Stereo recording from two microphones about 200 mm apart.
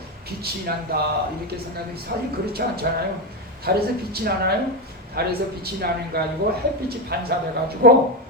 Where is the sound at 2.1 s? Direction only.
50° right (ahead or behind).